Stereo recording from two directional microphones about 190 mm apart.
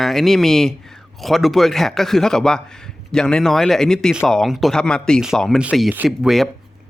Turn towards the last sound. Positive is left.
turn(degrees=0)  # may be behind; listen again after turning